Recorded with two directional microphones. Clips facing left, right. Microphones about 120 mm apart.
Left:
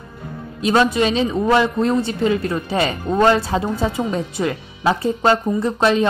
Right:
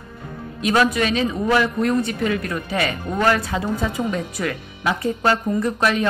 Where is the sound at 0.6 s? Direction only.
30° left (ahead or behind).